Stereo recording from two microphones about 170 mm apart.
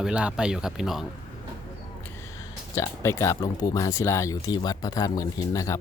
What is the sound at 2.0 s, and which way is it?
Speech, 15° left (ahead or behind).